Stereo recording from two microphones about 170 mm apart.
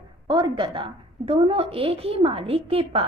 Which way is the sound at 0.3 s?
25° right (ahead or behind).